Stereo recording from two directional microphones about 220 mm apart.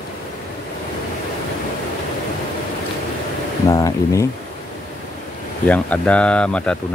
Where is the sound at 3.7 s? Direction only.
15° left (ahead or behind).